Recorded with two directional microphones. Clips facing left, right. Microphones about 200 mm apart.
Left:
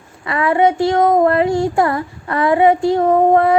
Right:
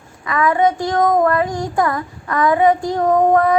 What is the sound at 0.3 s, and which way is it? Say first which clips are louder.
Female singing: left 1 dB; 30° left (ahead or behind).